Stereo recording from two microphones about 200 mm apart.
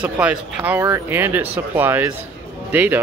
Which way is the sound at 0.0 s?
5° right (ahead or behind).